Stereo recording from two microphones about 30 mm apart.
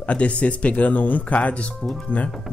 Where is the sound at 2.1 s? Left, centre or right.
Left.